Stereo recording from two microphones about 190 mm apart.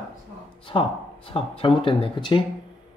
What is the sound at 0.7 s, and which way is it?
Speech, 30° left (ahead or behind).